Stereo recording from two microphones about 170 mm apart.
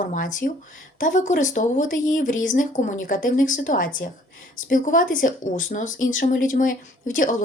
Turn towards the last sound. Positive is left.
turn(degrees=50)  # may be behind; listen again after turning